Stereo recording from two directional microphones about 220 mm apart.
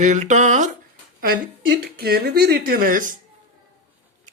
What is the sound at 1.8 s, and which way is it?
Speech, 45° right (ahead or behind).